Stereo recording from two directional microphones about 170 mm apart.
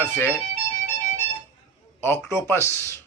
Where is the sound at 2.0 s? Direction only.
15° left (ahead or behind).